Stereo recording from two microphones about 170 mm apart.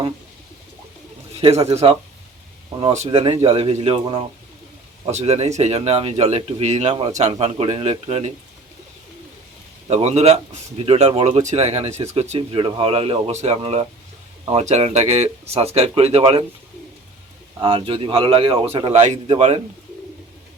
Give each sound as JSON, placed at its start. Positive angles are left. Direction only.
{"t": 1.4, "sound": "a man's voice", "side_deg": -35}
{"t": 9.9, "sound": "speech", "side_deg": -40}
{"t": 17.6, "sound": "speech", "side_deg": -30}